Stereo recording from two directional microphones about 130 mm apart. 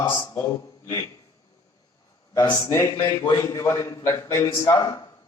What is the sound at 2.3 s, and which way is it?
A man's voice, 25° left (ahead or behind).